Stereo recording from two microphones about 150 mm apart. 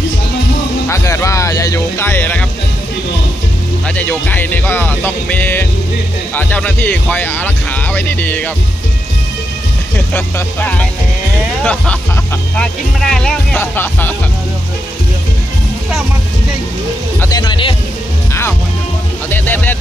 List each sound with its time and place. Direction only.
0.8 s speech: 20° left (ahead or behind)
3.8 s speech: 10° left (ahead or behind)
9.9 s speech: 10° left (ahead or behind)
17.2 s speech: 25° left (ahead or behind)
19.3 s speech: 15° left (ahead or behind)